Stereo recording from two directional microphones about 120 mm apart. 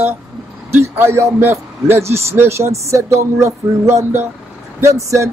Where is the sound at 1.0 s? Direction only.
20° right (ahead or behind).